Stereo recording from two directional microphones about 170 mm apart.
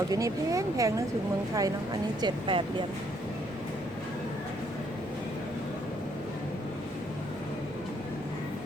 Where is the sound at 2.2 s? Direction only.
30° right (ahead or behind).